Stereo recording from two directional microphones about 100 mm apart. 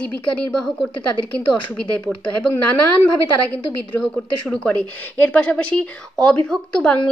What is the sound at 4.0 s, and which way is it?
A woman's voice, 10° left (ahead or behind).